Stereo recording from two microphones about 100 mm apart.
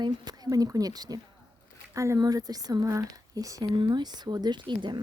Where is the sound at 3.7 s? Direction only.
55° right (ahead or behind).